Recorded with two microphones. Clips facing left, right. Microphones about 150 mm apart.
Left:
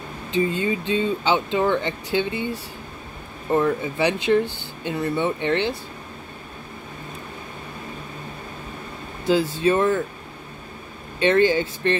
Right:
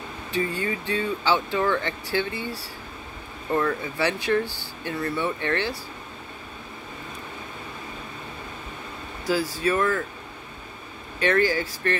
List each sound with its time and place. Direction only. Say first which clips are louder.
0.3 s speech: left 5 dB; 20° left (ahead or behind)
9.2 s speech: left 5 dB; 25° left (ahead or behind)
11.1 s speech: left 4 dB; 25° left (ahead or behind)